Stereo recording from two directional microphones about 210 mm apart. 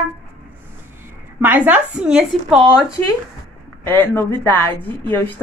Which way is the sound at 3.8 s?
10° left (ahead or behind).